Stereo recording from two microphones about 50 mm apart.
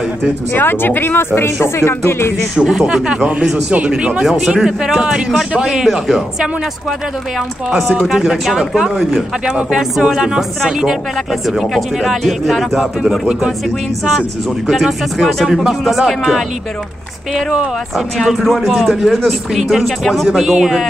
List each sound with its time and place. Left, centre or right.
0.5 s speech: left
2.5 s speech: centre
4.5 s speech: centre
8.1 s speech: centre
14.7 s speech: centre
17.9 s speech: centre
20.2 s speech: centre